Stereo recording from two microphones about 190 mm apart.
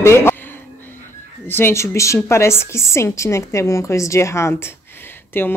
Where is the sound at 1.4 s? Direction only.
10° left (ahead or behind).